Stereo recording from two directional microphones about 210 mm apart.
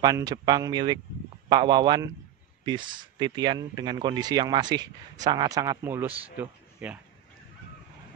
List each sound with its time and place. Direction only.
0.0 s speech: 15° right (ahead or behind)